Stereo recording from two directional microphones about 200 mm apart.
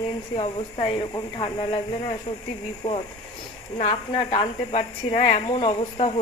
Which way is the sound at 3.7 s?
30° left (ahead or behind).